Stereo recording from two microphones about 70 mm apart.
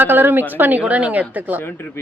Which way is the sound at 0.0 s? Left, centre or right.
Right.